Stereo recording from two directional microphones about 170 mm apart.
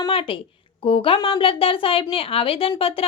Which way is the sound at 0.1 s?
30° left (ahead or behind).